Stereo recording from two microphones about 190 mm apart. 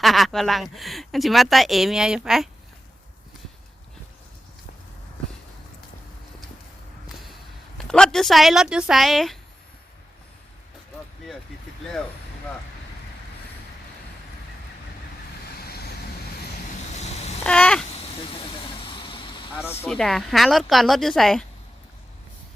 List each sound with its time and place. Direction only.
0.0 s speech: centre (ahead or behind)
7.9 s speech: 5° left (ahead or behind)
15.6 s vehicle: 55° left (ahead or behind)
16.9 s vehicle: 35° left (ahead or behind)
17.4 s babbling: 5° left (ahead or behind)
17.9 s vehicle: 30° left (ahead or behind)
19.8 s speech: 5° left (ahead or behind)